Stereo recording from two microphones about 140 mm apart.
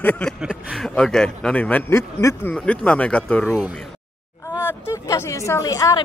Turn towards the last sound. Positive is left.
turn(degrees=25)  # may be behind; listen again after turning